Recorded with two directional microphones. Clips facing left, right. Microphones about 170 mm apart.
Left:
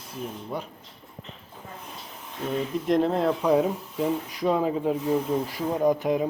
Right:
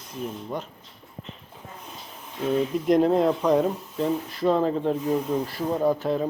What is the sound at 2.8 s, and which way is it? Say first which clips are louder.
Speech: right 3 dB; centre (ahead or behind).